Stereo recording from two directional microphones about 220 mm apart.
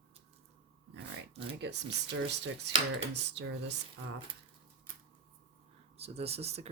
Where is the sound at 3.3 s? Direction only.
50° right (ahead or behind).